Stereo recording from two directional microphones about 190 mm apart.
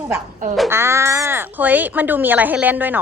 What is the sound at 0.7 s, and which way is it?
Speech, 15° right (ahead or behind).